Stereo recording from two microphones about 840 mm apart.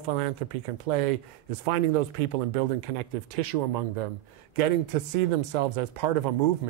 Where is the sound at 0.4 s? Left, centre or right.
Right.